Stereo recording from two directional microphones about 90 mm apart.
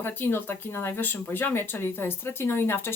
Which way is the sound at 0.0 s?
25° left (ahead or behind).